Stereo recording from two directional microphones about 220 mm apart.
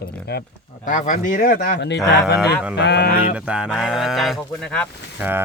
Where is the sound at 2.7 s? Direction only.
50° left (ahead or behind).